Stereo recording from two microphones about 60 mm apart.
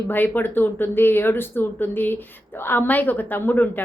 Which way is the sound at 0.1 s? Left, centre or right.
Left.